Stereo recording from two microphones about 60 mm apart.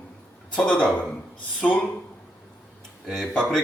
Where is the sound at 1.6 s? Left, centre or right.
Centre.